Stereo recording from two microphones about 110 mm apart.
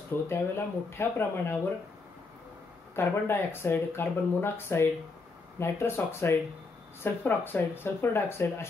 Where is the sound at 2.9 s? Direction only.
20° left (ahead or behind).